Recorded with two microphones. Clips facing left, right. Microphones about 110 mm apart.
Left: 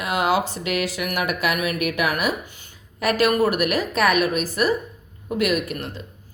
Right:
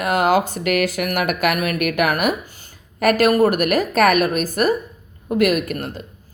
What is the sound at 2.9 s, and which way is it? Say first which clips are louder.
Speech: right 4 dB; 50° right (ahead or behind).